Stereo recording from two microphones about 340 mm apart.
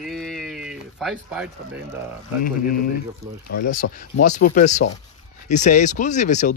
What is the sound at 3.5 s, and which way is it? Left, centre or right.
Speech, left.